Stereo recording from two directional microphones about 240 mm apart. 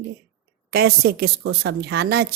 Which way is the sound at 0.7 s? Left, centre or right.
Right.